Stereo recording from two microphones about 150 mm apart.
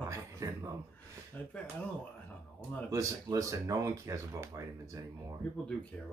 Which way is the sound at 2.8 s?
20° right (ahead or behind).